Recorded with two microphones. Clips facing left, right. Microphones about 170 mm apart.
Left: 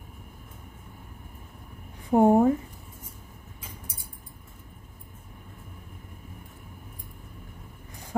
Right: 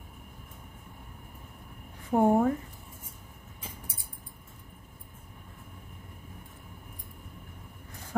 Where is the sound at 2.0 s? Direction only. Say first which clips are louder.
Left 4 dB; 20° left (ahead or behind).